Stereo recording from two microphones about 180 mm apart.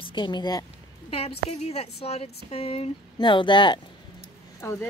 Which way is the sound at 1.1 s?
35° left (ahead or behind).